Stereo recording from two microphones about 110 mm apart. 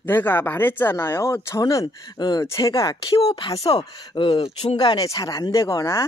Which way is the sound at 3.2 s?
60° left (ahead or behind).